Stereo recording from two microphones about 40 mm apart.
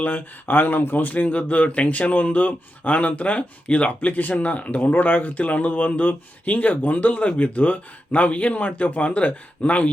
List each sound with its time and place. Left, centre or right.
0.0 s speech: left